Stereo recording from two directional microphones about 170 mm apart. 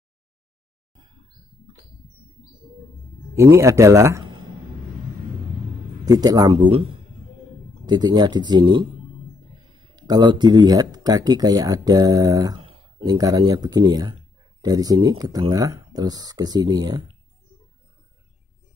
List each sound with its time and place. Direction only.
3.5 s speech: 15° right (ahead or behind)
6.0 s speech: 20° right (ahead or behind)
9.9 s speech: 25° right (ahead or behind)